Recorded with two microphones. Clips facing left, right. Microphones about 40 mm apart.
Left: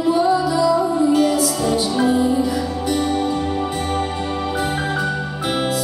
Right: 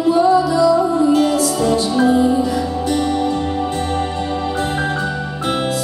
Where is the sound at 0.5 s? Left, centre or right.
Centre.